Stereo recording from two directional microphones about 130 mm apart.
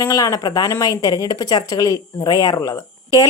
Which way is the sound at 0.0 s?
25° left (ahead or behind).